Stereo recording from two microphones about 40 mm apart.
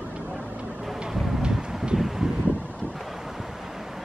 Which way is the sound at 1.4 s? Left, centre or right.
Right.